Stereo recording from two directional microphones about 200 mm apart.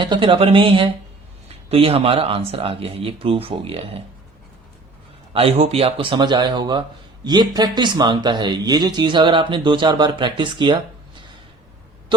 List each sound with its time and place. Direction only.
0.0 s speech: 25° right (ahead or behind)
5.3 s speech: 30° right (ahead or behind)